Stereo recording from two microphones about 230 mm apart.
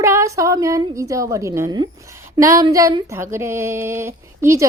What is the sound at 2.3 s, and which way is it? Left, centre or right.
Speech, centre.